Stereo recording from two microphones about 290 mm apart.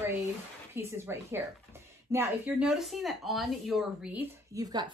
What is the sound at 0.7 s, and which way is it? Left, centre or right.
Speech, centre.